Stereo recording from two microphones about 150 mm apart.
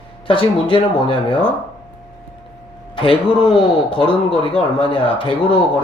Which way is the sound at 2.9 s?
35° left (ahead or behind).